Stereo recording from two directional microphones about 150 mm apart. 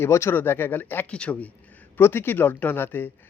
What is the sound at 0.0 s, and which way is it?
A man's voice, 15° left (ahead or behind).